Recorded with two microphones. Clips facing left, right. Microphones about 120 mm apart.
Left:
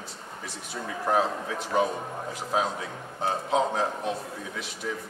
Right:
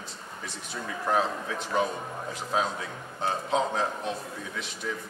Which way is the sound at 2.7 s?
25° left (ahead or behind).